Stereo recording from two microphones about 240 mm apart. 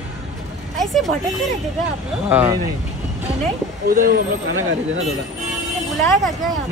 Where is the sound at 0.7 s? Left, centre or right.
Centre.